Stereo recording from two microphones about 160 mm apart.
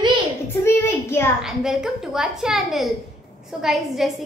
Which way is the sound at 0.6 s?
15° left (ahead or behind).